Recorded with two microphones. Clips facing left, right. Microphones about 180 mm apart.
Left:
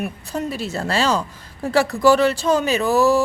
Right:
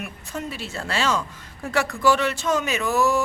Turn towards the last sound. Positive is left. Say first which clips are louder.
# left 5 dB
turn(degrees=35)  # may be behind; listen again after turning